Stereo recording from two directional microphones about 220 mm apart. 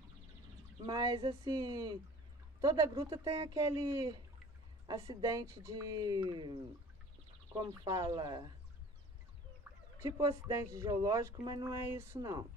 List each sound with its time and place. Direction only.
0.8 s speech: 20° right (ahead or behind)
9.9 s speech: 15° right (ahead or behind)